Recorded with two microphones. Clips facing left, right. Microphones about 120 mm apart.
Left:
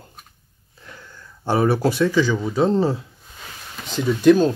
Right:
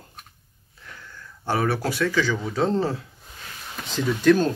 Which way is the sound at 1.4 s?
25° left (ahead or behind).